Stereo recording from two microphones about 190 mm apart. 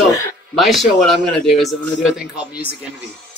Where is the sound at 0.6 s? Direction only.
Centre (ahead or behind).